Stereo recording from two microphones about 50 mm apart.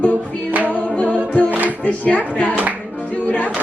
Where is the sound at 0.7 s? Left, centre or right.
Left.